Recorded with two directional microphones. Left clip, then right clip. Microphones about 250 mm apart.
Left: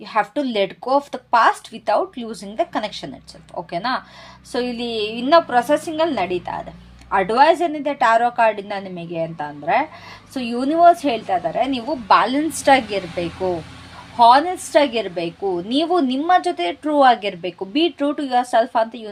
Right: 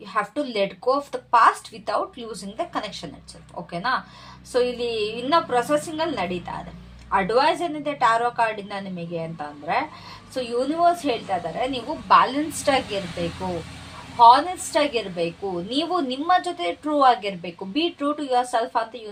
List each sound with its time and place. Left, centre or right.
0.1 s a woman's voice: left
4.5 s a woman's voice: left